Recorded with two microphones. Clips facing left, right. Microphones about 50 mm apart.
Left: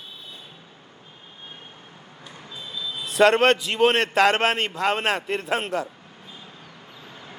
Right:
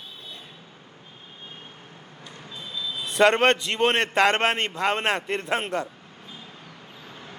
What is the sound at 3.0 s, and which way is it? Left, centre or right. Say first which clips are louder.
A man's voice: left 2 dB; centre.